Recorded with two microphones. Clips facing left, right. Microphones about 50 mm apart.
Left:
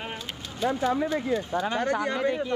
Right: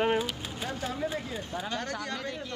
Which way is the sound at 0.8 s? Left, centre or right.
Left.